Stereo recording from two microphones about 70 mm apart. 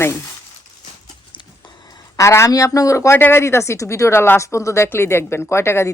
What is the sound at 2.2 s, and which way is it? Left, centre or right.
Speech, left.